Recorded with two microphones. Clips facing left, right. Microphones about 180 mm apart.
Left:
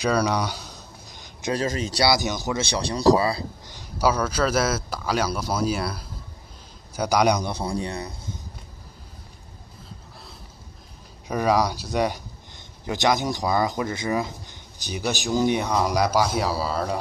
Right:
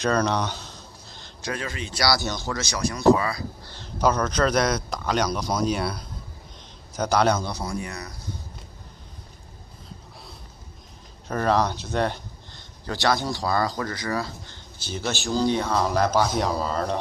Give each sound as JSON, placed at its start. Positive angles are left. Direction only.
{"t": 0.0, "sound": "a sound", "side_deg": 10}
{"t": 1.5, "sound": "speech", "side_deg": 40}
{"t": 2.0, "sound": "speech", "side_deg": 20}
{"t": 3.6, "sound": "speech", "side_deg": 10}
{"t": 11.2, "sound": "speech", "side_deg": 10}